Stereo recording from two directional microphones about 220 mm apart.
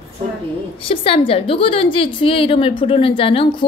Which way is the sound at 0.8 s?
25° left (ahead or behind).